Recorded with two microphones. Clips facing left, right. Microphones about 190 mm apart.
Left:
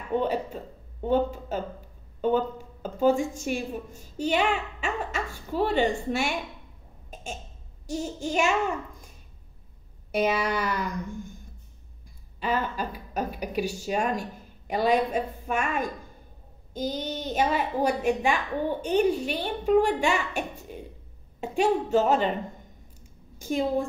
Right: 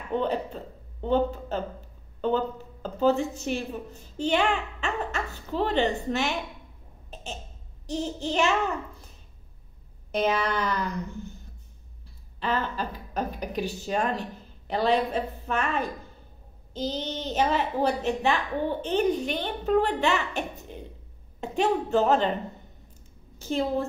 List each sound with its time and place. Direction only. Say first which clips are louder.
0.1 s a woman's voice: left 1 dB; 10° left (ahead or behind)
7.8 s a woman's voice: right 1 dB; 10° left (ahead or behind)
10.1 s a woman's voice: even; 10° left (ahead or behind)
12.4 s a woman's voice: left 1 dB; 10° left (ahead or behind)
23.4 s a woman's voice: left 1 dB; 10° left (ahead or behind)